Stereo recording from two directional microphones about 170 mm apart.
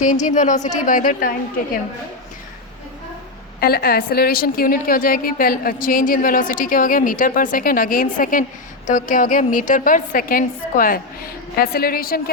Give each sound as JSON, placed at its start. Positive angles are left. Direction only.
{"t": 0.0, "sound": "a woman's voice", "side_deg": 45}
{"t": 3.6, "sound": "a woman's voice", "side_deg": 65}